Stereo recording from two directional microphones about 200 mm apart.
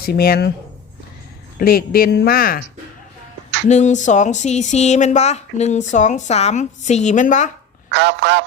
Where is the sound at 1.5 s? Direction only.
50° left (ahead or behind).